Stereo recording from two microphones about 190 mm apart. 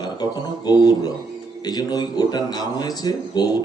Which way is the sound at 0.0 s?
20° left (ahead or behind).